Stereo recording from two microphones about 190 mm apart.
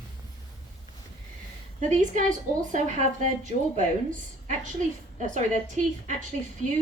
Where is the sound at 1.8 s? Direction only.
40° right (ahead or behind).